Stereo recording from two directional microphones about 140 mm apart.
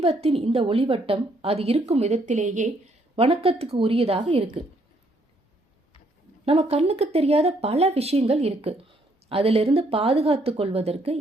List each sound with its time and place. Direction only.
0.0 s a woman's voice: 45° right (ahead or behind); by 2.7 s 60° right (ahead or behind)
3.2 s a woman's voice: 45° right (ahead or behind)
6.4 s a woman's voice: 45° right (ahead or behind)